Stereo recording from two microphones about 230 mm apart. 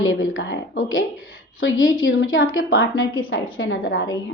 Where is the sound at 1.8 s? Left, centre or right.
Left.